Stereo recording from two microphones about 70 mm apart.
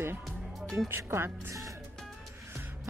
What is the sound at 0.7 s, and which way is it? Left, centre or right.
Speech, right.